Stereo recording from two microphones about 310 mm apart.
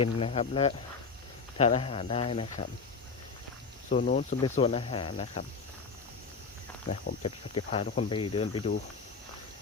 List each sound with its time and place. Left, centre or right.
0.0 s speech: centre
3.8 s speech: left
6.8 s speech: left
7.2 s speech: centre